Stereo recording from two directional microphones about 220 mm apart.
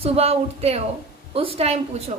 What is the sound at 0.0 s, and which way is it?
A woman's voice, 25° right (ahead or behind).